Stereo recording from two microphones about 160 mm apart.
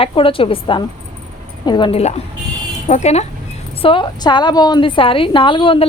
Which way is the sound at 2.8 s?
45° left (ahead or behind).